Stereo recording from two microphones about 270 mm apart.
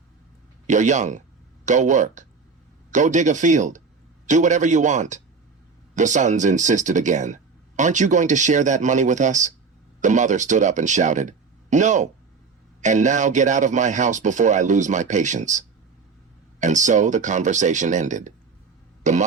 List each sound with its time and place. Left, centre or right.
0.7 s speech: right